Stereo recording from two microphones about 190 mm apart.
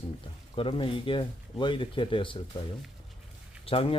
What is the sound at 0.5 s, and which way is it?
Speech, 30° left (ahead or behind).